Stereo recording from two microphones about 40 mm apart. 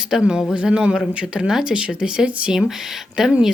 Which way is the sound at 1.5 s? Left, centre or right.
Centre.